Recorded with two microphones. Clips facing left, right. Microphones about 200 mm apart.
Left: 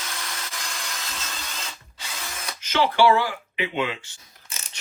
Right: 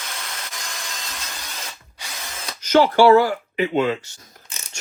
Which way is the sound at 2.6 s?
45° right (ahead or behind).